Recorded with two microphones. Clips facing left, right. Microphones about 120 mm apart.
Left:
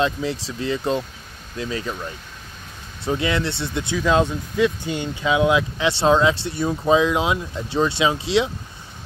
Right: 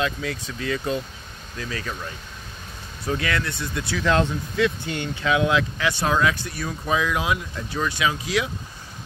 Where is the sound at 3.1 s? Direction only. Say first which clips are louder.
Left 4 dB; 20° left (ahead or behind).